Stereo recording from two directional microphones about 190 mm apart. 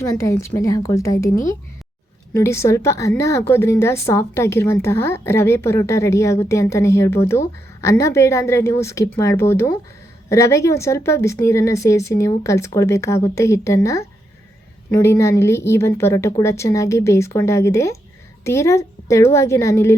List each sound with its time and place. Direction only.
0.0 s a woman's voice: 15° left (ahead or behind)
2.3 s a woman's voice: 15° left (ahead or behind)